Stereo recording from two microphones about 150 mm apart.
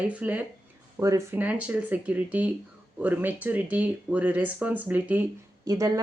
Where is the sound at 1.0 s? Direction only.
20° right (ahead or behind).